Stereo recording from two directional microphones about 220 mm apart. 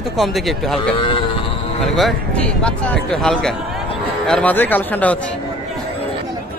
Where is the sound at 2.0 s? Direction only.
5° left (ahead or behind).